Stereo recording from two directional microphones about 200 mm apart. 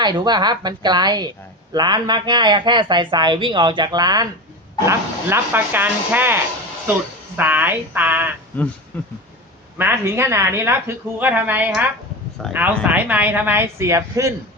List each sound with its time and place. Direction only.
0.0 s speech: 20° right (ahead or behind)
8.9 s speech: 10° left (ahead or behind)
9.7 s speech: 10° right (ahead or behind)